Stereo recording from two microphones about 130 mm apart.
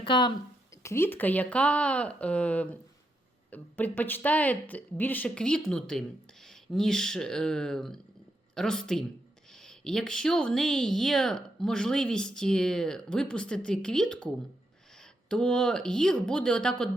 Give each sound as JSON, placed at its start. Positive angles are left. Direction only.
{"t": 0.0, "sound": "speech", "side_deg": 40}
{"t": 0.7, "sound": "speech", "side_deg": 25}